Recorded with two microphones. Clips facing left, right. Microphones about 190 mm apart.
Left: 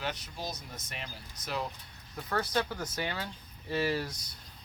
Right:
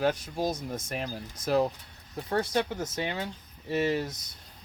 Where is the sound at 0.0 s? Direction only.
50° right (ahead or behind).